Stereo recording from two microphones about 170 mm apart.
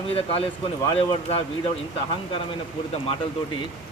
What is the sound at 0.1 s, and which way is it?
Speech, 35° left (ahead or behind).